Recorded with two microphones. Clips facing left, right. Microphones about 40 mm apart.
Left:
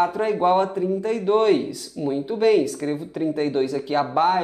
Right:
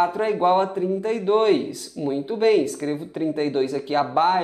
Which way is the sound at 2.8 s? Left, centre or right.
Centre.